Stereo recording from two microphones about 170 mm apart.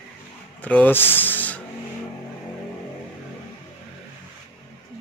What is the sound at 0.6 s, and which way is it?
Speech, 10° left (ahead or behind).